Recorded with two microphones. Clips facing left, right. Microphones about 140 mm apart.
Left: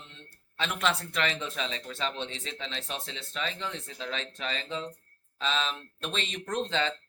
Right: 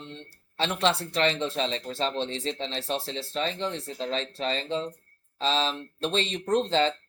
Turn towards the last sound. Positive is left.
turn(degrees=-35)  # may be behind; listen again after turning